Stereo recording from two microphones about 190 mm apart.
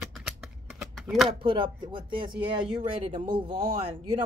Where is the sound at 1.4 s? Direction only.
25° right (ahead or behind).